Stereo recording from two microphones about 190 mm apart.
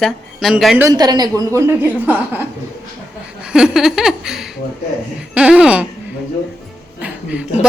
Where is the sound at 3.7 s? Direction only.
Centre (ahead or behind).